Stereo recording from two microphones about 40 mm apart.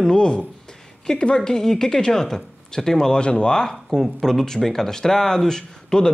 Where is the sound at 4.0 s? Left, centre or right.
Centre.